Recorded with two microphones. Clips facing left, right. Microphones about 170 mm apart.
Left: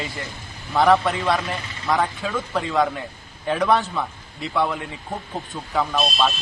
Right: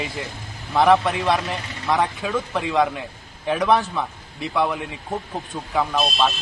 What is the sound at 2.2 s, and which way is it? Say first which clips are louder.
Speech: right 2 dB; 15° right (ahead or behind).